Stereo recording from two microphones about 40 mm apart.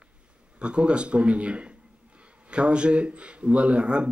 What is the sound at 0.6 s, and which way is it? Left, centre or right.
A man's voice, right.